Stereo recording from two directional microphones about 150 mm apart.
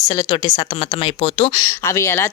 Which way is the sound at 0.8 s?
40° left (ahead or behind).